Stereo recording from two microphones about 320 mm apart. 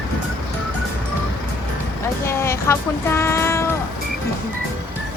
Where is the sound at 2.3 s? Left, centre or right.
Centre.